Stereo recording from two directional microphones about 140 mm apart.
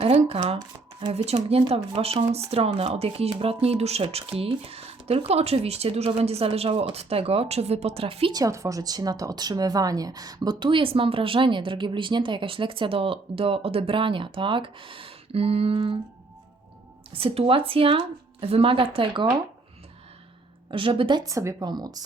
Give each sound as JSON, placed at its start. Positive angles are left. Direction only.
{"t": 0.0, "sound": "shuffling cards", "side_deg": -45}
{"t": 1.0, "sound": "speech", "side_deg": -50}
{"t": 8.3, "sound": "a woman's voice", "side_deg": -25}
{"t": 17.1, "sound": "a woman's voice", "side_deg": -40}
{"t": 20.7, "sound": "a woman's voice", "side_deg": -40}